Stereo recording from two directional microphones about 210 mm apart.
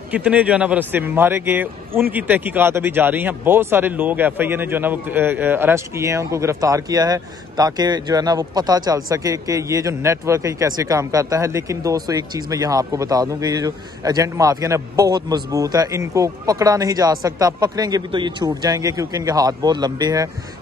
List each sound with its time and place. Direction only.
0.1 s speech: 5° right (ahead or behind)